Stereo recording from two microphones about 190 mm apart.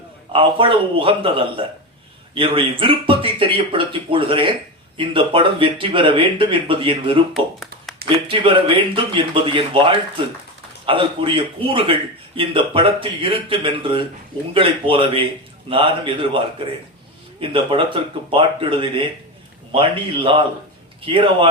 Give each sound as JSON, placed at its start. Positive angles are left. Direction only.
{"t": 0.3, "sound": "speech", "side_deg": -30}
{"t": 7.3, "sound": "a sound", "side_deg": 0}
{"t": 8.3, "sound": "speech", "side_deg": -25}
{"t": 17.4, "sound": "speech", "side_deg": -25}